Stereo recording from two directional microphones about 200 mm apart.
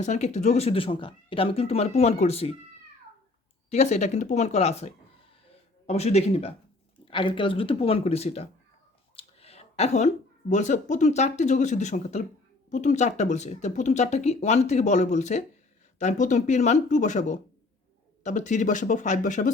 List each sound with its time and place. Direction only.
0.0 s speech: 35° left (ahead or behind)
3.7 s speech: 35° left (ahead or behind)
9.1 s a sound: 30° left (ahead or behind)
10.5 s speech: 35° left (ahead or behind)